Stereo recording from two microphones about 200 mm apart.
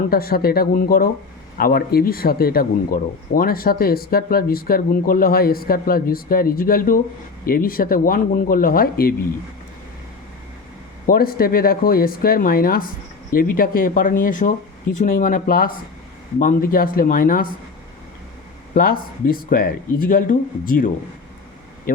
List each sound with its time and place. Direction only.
0.1 s speech: 50° left (ahead or behind)
11.0 s speech: 50° left (ahead or behind)
18.7 s speech: 45° left (ahead or behind)